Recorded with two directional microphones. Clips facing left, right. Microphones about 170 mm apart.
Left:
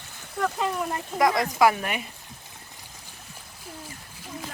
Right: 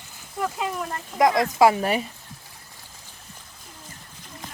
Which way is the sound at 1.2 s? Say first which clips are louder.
Right 3 dB; 20° right (ahead or behind).